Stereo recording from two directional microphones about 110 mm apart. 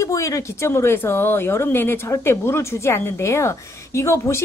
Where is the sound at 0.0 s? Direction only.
30° left (ahead or behind).